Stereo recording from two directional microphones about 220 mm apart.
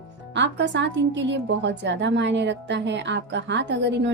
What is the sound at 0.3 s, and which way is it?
A woman's voice, 55° right (ahead or behind).